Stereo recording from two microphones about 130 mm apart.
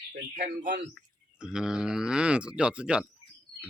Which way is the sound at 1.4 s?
5° right (ahead or behind).